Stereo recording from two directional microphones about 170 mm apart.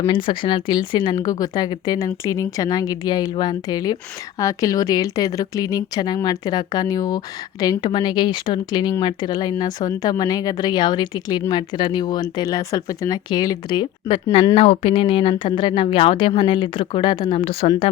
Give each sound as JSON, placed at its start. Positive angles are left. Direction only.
{"t": 0.0, "sound": "speech", "side_deg": 30}
{"t": 14.5, "sound": "speech", "side_deg": 35}